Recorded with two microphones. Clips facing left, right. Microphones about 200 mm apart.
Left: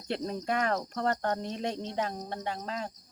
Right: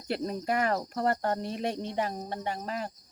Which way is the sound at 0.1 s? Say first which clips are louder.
Right 1 dB; 5° right (ahead or behind).